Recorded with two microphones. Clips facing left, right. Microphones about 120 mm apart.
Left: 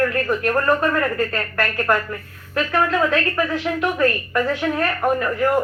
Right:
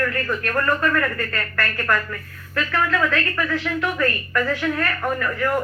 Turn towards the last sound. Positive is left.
turn(degrees=25)  # may be behind; listen again after turning